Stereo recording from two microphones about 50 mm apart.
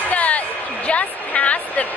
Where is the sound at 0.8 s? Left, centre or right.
Left.